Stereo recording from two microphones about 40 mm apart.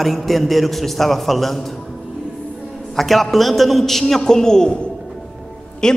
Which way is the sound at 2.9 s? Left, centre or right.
Centre.